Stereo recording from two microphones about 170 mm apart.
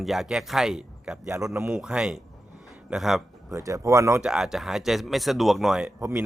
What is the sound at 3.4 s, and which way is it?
Speech, 20° right (ahead or behind).